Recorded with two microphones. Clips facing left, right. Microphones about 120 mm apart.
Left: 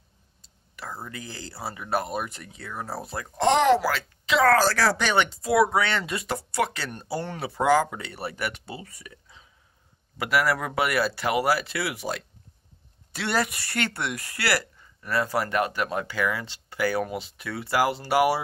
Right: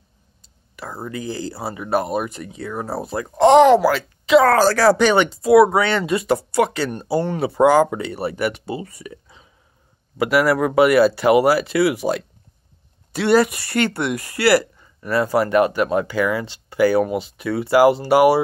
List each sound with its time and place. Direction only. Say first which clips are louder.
1.1 s speech: right 12 dB; 10° right (ahead or behind)
2.7 s speech: right 7 dB; 30° right (ahead or behind)
3.3 s speech: right 9 dB; 15° right (ahead or behind)
4.6 s speech: right 9 dB; 30° right (ahead or behind)
4.9 s speech: right 8 dB; 10° right (ahead or behind)